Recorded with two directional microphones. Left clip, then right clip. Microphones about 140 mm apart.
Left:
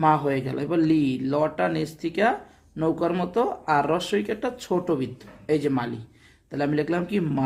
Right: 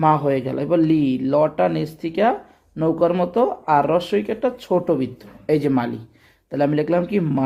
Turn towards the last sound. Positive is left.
turn(degrees=-30)  # may be behind; listen again after turning